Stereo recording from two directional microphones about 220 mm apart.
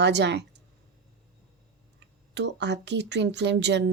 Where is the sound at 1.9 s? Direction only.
55° right (ahead or behind).